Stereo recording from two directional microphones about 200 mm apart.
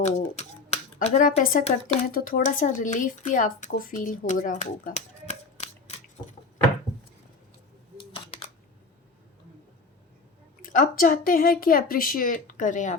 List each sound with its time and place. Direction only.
0.0 s speech: 35° left (ahead or behind)
7.9 s camera: 25° left (ahead or behind)
10.6 s a woman's voice: 40° left (ahead or behind)